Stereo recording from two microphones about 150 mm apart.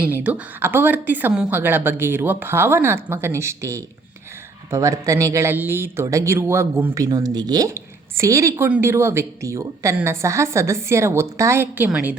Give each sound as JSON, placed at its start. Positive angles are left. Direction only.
{"t": 0.0, "sound": "speech", "side_deg": -10}